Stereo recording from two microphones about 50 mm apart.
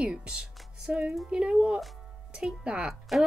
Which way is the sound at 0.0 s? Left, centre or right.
Centre.